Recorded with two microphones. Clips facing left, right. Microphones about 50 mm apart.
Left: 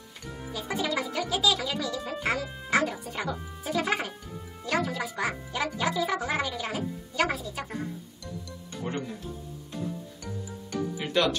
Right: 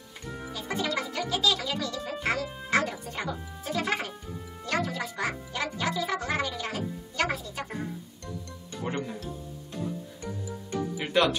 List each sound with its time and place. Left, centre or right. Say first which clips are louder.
0.5 s speech: left 1 dB; centre
11.0 s speech: right 1 dB; centre